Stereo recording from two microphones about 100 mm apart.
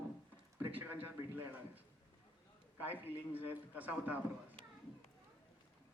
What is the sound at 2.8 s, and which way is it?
A woman's voice, 20° right (ahead or behind).